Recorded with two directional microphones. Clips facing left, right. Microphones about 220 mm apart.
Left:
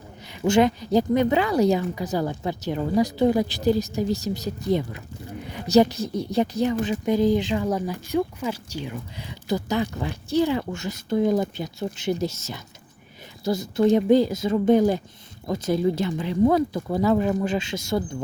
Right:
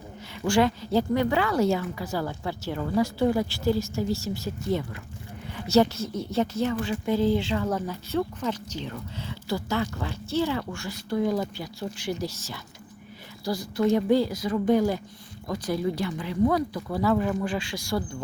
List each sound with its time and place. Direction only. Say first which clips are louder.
0.4 s a woman's voice: left 4 dB; 20° left (ahead or behind)
5.5 s a woman's voice: left 3 dB; 15° left (ahead or behind)